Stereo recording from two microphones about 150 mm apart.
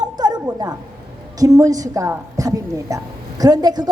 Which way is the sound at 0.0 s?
25° right (ahead or behind).